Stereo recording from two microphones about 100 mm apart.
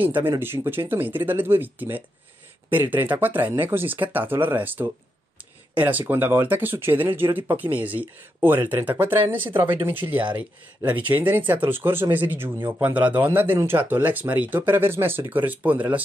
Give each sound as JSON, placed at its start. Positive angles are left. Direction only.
{"t": 0.0, "sound": "speech", "side_deg": -20}